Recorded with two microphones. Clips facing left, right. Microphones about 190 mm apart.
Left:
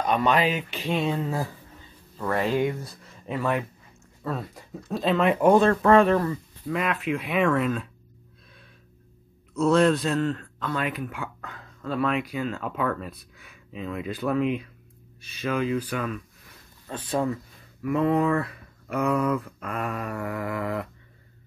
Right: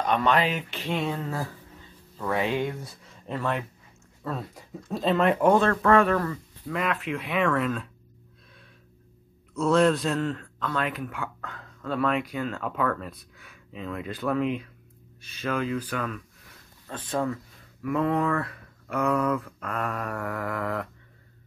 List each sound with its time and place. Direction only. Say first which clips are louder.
0.0 s speech: left 1 dB; 10° left (ahead or behind)
2.1 s speech: left 2 dB; centre (ahead or behind)
5.5 s speech: left 5 dB; 20° left (ahead or behind)
6.7 s speech: left 2 dB; 10° left (ahead or behind)
9.6 s speech: left 1 dB; centre (ahead or behind)